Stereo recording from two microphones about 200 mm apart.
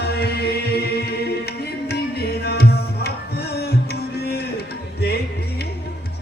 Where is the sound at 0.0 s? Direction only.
55° left (ahead or behind).